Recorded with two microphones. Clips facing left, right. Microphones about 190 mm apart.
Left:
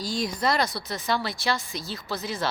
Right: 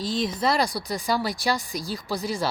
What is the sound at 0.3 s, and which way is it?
Speech, 5° right (ahead or behind).